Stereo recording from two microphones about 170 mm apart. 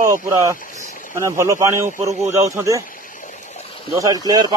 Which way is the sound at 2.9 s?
55° left (ahead or behind).